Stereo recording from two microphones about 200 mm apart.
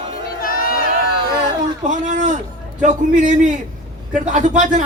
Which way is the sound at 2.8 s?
40° right (ahead or behind).